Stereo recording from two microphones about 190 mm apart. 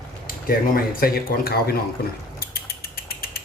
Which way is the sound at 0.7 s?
50° left (ahead or behind).